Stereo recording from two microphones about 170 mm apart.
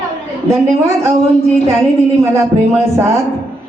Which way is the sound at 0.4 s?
15° right (ahead or behind).